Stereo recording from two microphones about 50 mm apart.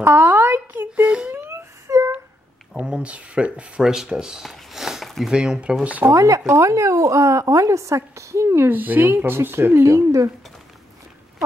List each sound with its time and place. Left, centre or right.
0.0 s a woman's voice: right
0.3 s a sound: right
1.0 s speech: right
1.3 s wail: right
1.9 s humming: right
2.8 s speech: right
3.8 s speech: centre
4.2 s a sound: centre
5.3 s speech: centre
6.1 s speech: right
8.6 s speech: right
9.8 s speech: right